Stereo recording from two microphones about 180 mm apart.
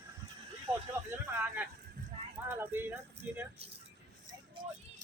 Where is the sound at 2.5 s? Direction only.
10° right (ahead or behind).